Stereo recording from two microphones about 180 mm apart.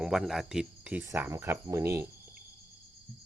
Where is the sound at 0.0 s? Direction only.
5° right (ahead or behind).